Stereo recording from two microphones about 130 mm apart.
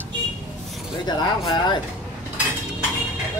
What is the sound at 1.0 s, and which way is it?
Speech, 35° left (ahead or behind).